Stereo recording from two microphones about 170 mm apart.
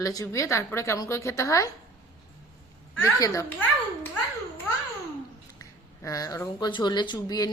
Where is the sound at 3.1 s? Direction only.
20° left (ahead or behind).